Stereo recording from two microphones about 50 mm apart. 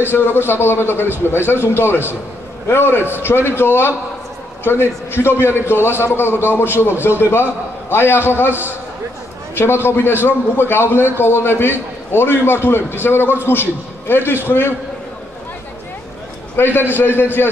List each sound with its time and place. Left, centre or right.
0.1 s a man's voice: left
16.5 s a man's voice: left